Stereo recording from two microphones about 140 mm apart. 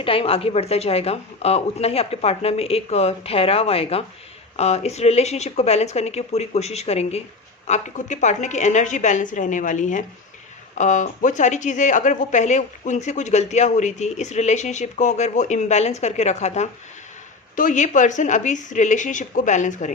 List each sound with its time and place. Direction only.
0.0 s a woman's voice: 40° left (ahead or behind)
7.7 s a woman's voice: 60° left (ahead or behind)